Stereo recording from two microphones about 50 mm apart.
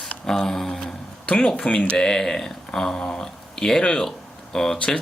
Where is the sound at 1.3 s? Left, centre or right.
Centre.